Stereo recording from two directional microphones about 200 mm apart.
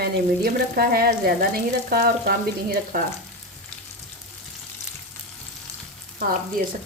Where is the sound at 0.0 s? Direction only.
50° right (ahead or behind).